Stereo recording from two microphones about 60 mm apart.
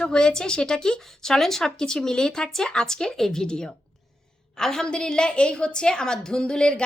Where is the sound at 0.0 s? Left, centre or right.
Centre.